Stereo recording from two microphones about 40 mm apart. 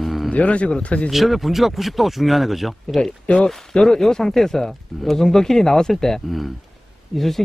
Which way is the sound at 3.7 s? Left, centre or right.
Centre.